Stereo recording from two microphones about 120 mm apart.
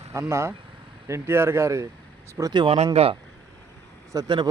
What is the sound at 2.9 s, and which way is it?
Speech, 55° right (ahead or behind).